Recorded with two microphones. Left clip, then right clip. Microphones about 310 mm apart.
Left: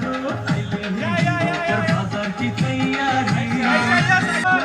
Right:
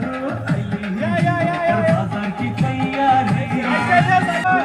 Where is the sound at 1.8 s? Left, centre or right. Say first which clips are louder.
Right 4 dB; centre.